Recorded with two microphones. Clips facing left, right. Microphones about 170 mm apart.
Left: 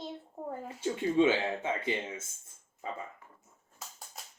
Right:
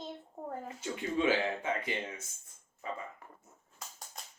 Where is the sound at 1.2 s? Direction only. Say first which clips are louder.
Left 3 dB; 25° left (ahead or behind).